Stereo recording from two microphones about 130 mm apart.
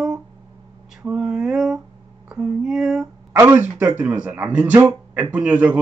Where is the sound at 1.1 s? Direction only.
5° right (ahead or behind).